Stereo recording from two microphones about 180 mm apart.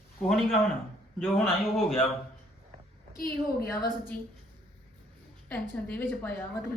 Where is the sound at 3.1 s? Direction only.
55° left (ahead or behind).